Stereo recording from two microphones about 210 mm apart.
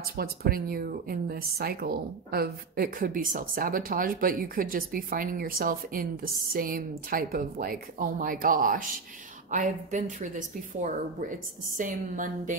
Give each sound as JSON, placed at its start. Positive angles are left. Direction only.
{"t": 0.0, "sound": "speech", "side_deg": -45}